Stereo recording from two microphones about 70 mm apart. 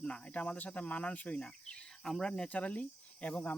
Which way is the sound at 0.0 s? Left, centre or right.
Centre.